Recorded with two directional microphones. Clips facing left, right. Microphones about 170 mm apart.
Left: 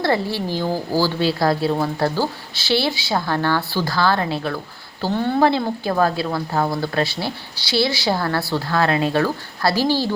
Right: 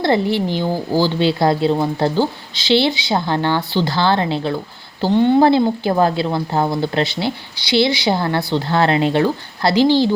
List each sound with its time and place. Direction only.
0.0 s a woman's voice: 20° right (ahead or behind)